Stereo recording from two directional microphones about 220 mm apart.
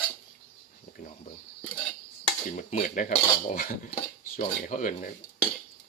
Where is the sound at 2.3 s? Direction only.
35° left (ahead or behind).